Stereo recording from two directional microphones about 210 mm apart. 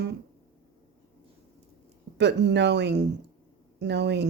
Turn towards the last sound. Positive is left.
turn(degrees=-55)  # may be behind; listen again after turning